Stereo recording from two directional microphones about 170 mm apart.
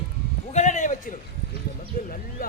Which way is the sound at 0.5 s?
45° left (ahead or behind).